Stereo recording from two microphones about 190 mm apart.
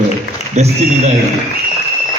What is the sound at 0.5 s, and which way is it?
Speech, 35° right (ahead or behind).